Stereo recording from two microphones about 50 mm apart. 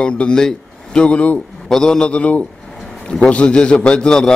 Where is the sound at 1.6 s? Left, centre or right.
Centre.